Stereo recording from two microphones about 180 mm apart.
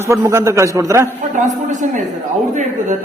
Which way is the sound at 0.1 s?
15° right (ahead or behind).